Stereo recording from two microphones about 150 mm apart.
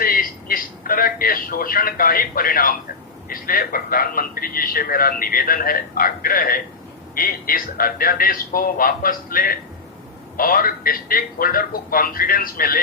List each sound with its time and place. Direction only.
0.0 s a man's voice: 75° left (ahead or behind)